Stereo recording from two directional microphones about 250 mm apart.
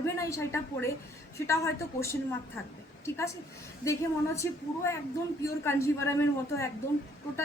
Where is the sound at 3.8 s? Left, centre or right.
Centre.